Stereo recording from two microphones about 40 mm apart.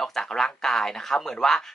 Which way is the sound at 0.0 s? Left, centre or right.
Centre.